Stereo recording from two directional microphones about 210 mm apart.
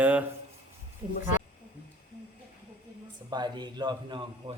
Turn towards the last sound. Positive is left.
turn(degrees=-20)  # may be behind; listen again after turning